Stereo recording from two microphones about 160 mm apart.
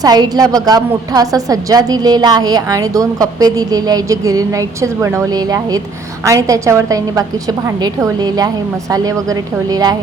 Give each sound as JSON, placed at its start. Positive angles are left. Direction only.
{"t": 0.0, "sound": "a woman's voice", "side_deg": -25}